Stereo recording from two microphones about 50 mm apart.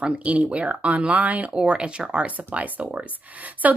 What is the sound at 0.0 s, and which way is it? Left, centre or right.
A woman's voice, right.